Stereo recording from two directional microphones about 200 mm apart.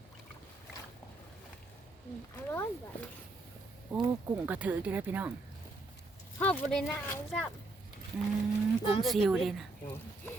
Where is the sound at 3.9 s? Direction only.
10° right (ahead or behind).